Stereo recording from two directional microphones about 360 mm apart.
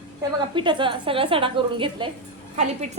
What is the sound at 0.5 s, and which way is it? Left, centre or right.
A woman's voice, centre.